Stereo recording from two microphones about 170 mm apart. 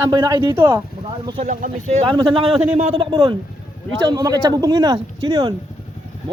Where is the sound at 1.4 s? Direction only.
45° right (ahead or behind).